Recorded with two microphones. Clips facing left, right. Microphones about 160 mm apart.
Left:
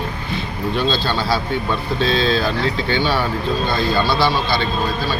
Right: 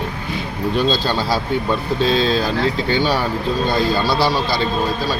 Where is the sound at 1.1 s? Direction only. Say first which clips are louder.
Right 1 dB; 40° right (ahead or behind).